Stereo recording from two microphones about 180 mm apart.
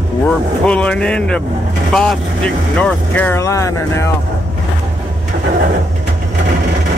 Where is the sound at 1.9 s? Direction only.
5° left (ahead or behind).